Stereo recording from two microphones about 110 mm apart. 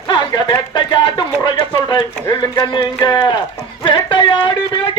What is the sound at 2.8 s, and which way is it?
Speech, 45° left (ahead or behind).